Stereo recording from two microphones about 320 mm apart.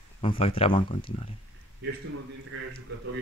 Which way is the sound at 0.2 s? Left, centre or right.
Centre.